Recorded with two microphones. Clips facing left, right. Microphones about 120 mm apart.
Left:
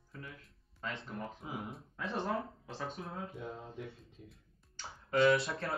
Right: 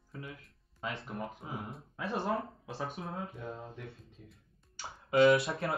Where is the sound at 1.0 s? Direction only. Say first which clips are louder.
Right 2 dB; 5° right (ahead or behind).